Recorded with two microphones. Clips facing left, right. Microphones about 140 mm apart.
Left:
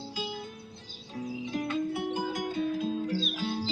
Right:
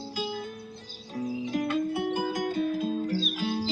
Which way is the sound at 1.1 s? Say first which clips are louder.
Right 4 dB; 40° right (ahead or behind).